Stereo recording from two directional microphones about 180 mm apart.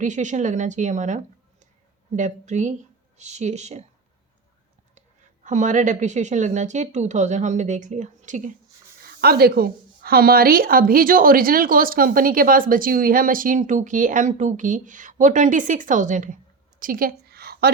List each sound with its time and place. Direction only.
0.0 s a woman's voice: 45° right (ahead or behind)
4.9 s a woman's voice: 40° right (ahead or behind)
9.0 s a woman's voice: 60° right (ahead or behind)
16.8 s a sound: 50° right (ahead or behind)